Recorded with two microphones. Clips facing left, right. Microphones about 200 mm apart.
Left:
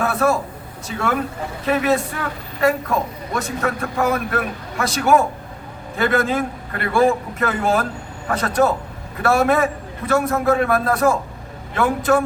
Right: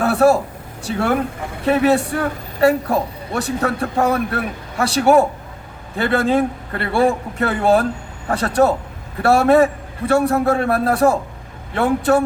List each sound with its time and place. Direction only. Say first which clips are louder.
0.0 s vehicle: right 5 dB; 35° right (ahead or behind)
0.9 s a woman's voice: right 4 dB; 35° right (ahead or behind)